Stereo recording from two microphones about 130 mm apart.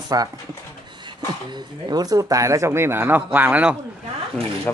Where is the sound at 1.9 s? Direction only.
30° right (ahead or behind); by 3.7 s 10° right (ahead or behind).